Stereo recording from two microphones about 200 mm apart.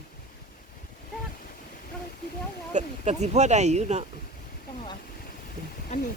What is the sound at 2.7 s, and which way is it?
Speech, 35° right (ahead or behind).